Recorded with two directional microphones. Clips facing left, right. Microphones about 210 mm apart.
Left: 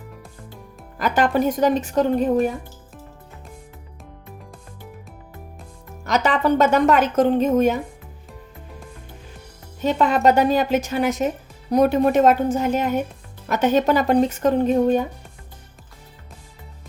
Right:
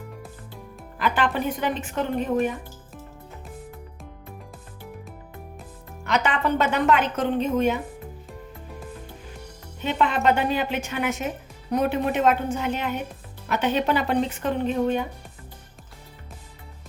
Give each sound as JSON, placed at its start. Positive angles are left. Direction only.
{"t": 0.9, "sound": "speech", "side_deg": 40}
{"t": 6.1, "sound": "a woman's voice", "side_deg": 40}
{"t": 9.8, "sound": "a woman's voice", "side_deg": 40}